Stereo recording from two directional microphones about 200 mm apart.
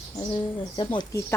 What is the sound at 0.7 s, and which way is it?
Speech, 20° left (ahead or behind).